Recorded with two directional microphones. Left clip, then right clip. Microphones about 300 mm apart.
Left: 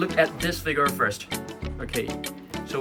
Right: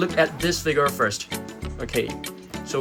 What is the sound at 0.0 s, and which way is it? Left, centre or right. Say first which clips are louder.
Speech: right 2 dB; centre.